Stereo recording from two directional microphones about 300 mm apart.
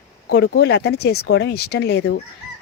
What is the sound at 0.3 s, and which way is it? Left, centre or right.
Speech, left.